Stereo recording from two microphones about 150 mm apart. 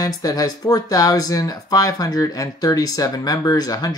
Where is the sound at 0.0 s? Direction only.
25° left (ahead or behind).